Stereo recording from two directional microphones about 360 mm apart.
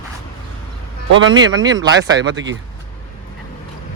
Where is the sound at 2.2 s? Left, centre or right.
Right.